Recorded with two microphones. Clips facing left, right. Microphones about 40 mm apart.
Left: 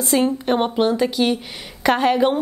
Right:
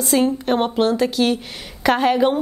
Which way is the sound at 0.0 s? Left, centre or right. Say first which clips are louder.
Right 1 dB; centre.